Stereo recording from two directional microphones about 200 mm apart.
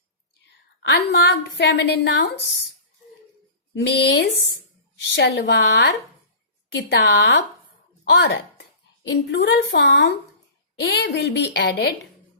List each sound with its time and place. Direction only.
0.4 s whispering: 60° left (ahead or behind)
1.1 s a woman's voice: 55° left (ahead or behind)
3.8 s a woman's voice: 55° left (ahead or behind)